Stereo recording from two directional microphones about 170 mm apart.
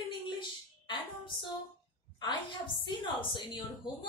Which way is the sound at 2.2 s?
25° left (ahead or behind).